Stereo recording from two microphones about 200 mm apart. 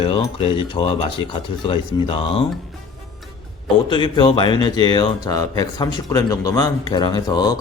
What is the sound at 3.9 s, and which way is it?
Speech, 25° left (ahead or behind).